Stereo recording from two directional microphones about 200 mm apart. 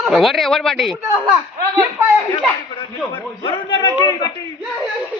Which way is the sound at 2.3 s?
25° left (ahead or behind).